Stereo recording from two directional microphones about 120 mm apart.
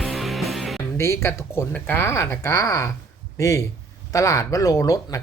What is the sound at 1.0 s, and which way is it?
Speech, 25° left (ahead or behind).